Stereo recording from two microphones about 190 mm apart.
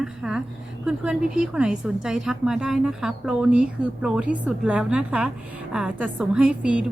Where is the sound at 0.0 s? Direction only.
5° right (ahead or behind).